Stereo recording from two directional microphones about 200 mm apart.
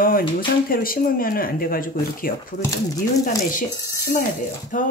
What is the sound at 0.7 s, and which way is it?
Speech, 45° left (ahead or behind).